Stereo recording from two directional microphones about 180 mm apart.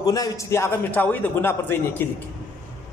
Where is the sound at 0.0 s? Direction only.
20° left (ahead or behind).